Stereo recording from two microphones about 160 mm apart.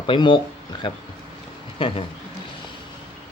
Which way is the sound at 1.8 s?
35° left (ahead or behind).